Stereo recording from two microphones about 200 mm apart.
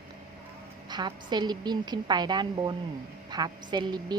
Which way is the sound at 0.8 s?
20° right (ahead or behind).